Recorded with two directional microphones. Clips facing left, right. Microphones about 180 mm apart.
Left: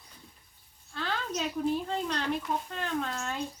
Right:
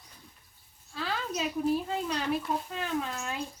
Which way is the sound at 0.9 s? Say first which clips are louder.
Even; 5° right (ahead or behind).